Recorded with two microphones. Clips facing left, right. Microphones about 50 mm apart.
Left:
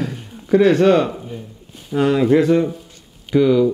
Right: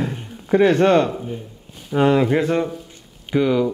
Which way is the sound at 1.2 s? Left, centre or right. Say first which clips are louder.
Right 2 dB; centre.